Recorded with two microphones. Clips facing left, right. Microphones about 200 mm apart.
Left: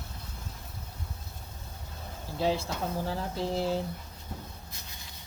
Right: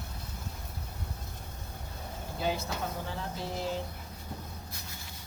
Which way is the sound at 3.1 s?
35° left (ahead or behind).